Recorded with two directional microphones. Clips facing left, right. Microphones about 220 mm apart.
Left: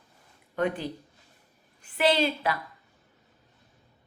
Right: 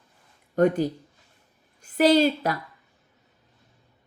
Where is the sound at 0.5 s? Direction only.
45° right (ahead or behind).